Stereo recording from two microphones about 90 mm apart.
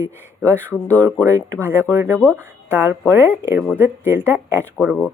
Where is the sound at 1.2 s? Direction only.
35° right (ahead or behind).